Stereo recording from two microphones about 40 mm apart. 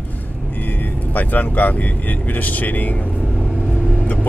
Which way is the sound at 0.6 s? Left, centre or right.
Left.